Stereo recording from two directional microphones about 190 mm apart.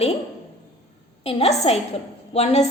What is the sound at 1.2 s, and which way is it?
A woman's voice, 30° left (ahead or behind).